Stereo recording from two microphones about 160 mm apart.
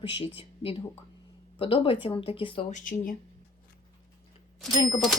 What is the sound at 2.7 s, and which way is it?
Speech, 60° left (ahead or behind).